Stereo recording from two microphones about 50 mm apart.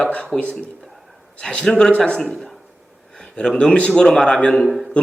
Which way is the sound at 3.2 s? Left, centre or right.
Centre.